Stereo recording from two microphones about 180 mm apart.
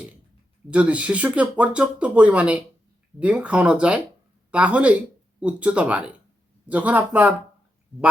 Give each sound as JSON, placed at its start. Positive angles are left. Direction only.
{"t": 0.7, "sound": "speech", "side_deg": -5}